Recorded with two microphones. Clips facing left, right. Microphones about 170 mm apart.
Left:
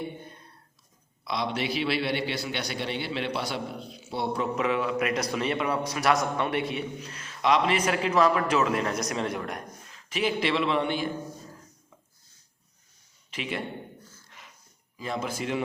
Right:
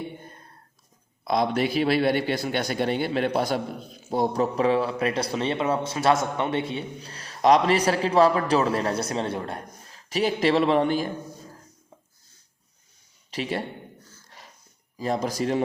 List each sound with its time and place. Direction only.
1.2 s a man's voice: 50° right (ahead or behind)
13.3 s a man's voice: 35° right (ahead or behind)
14.3 s snort: 35° right (ahead or behind)
14.9 s a man's voice: 40° right (ahead or behind)